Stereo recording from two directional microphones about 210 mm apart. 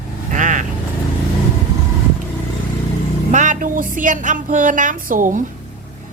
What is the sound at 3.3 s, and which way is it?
A woman's voice, 35° right (ahead or behind).